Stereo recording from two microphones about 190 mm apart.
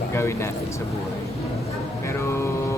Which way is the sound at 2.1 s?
15° left (ahead or behind).